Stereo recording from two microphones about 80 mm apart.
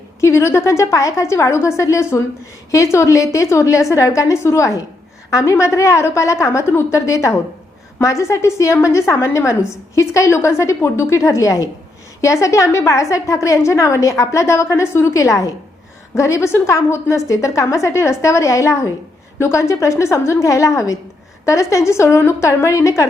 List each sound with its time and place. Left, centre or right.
0.2 s a woman's voice: left